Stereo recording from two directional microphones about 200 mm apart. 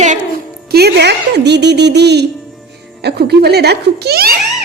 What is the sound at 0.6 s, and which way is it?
Speech, 55° right (ahead or behind).